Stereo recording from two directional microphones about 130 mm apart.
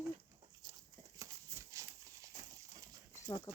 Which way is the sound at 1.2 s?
25° right (ahead or behind).